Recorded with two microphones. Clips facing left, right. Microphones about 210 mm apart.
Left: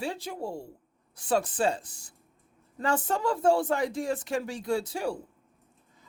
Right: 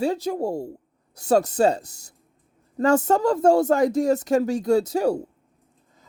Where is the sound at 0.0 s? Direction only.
45° right (ahead or behind).